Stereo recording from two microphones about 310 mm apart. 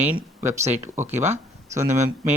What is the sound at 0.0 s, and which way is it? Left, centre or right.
Speech, centre.